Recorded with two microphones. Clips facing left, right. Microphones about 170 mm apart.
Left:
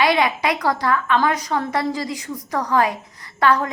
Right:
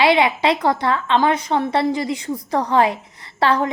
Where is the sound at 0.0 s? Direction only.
25° right (ahead or behind).